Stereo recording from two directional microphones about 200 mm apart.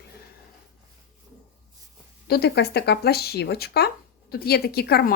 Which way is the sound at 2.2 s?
50° left (ahead or behind).